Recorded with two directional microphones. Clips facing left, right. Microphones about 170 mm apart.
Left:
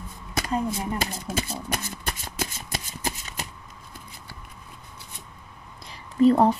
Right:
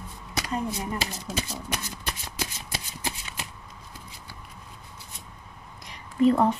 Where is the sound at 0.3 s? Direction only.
50° left (ahead or behind).